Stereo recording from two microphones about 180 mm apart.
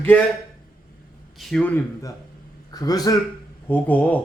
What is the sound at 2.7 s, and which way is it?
Speech, 20° left (ahead or behind).